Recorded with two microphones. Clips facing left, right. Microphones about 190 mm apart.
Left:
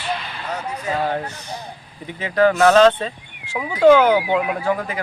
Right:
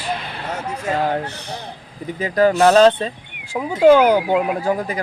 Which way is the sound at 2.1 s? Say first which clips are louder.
Right 1 dB; 35° right (ahead or behind).